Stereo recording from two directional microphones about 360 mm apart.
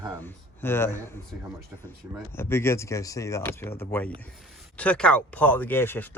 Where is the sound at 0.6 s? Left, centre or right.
Centre.